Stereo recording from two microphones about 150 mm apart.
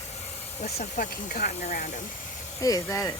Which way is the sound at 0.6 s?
60° left (ahead or behind).